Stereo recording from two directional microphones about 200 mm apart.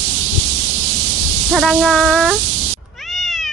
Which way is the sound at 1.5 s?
Centre (ahead or behind).